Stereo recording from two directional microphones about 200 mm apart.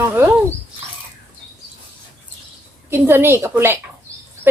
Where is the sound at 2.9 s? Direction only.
10° right (ahead or behind).